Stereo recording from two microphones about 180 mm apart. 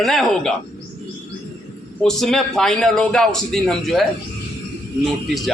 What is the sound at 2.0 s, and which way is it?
A man's voice, centre (ahead or behind).